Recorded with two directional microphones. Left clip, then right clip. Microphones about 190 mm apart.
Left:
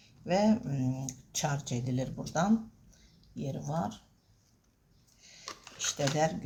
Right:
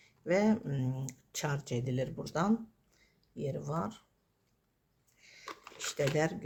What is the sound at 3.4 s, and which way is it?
Speech, 45° right (ahead or behind).